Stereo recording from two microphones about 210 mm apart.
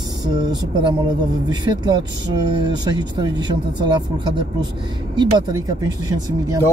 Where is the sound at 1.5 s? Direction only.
20° right (ahead or behind).